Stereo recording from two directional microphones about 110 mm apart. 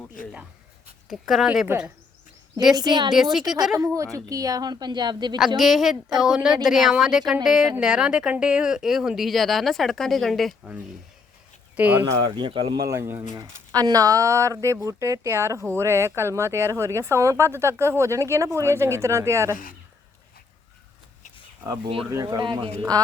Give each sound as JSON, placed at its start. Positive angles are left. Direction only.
{"t": 1.1, "sound": "speech", "side_deg": 0}
{"t": 2.7, "sound": "a woman's voice", "side_deg": -40}
{"t": 3.3, "sound": "speech", "side_deg": -5}
{"t": 3.8, "sound": "a woman's voice", "side_deg": -30}
{"t": 5.5, "sound": "speech", "side_deg": 0}
{"t": 11.8, "sound": "speech", "side_deg": -15}
{"t": 12.2, "sound": "speech", "side_deg": -50}
{"t": 12.7, "sound": "speech", "side_deg": -30}
{"t": 13.3, "sound": "speech", "side_deg": -35}
{"t": 22.1, "sound": "speech", "side_deg": -30}
{"t": 22.4, "sound": "speech", "side_deg": -45}